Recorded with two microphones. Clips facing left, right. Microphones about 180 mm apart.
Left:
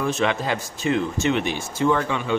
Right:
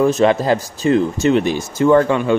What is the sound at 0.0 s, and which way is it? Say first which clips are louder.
Speech: right 9 dB; 40° right (ahead or behind).